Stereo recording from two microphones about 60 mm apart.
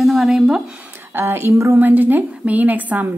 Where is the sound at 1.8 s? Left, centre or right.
Right.